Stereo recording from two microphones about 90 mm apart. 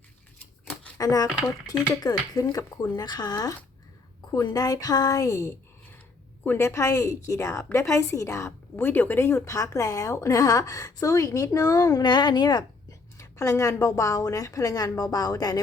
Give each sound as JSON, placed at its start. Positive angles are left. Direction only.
{"t": 0.9, "sound": "a woman's voice", "side_deg": 40}
{"t": 8.7, "sound": "a woman's voice", "side_deg": 20}
{"t": 12.0, "sound": "speech", "side_deg": 55}
{"t": 13.1, "sound": "a woman's voice", "side_deg": 35}